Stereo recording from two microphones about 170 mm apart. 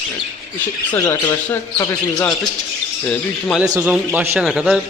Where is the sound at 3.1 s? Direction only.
5° left (ahead or behind).